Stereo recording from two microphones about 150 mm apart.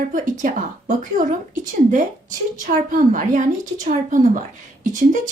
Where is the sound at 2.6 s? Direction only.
65° right (ahead or behind).